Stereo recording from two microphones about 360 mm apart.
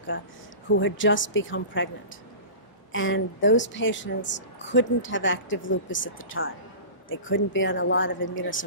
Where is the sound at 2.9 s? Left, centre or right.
Left.